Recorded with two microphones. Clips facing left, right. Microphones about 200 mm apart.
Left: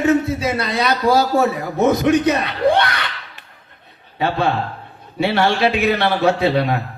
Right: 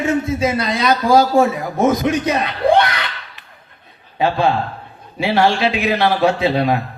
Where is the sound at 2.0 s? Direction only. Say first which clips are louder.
Left 3 dB; 60° left (ahead or behind).